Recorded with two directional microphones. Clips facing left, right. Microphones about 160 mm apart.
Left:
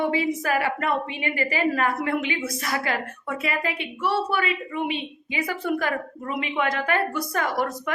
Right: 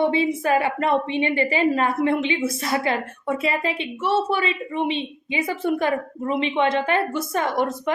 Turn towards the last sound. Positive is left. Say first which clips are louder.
# right 3 dB
turn(degrees=-25)  # may be behind; listen again after turning